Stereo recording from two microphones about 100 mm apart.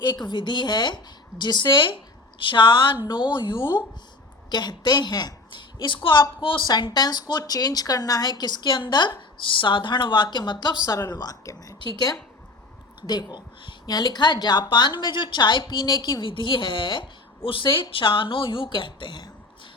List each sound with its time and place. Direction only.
0.0 s a woman's voice: 45° left (ahead or behind)
6.7 s a woman's voice: 45° left (ahead or behind)
10.8 s speech: 30° left (ahead or behind)
13.1 s a woman's voice: 45° left (ahead or behind)